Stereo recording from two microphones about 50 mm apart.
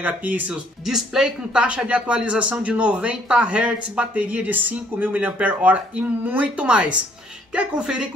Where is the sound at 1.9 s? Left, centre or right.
Right.